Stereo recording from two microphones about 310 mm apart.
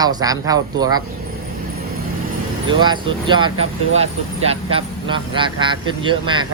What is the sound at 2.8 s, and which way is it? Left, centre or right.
A man's voice, centre.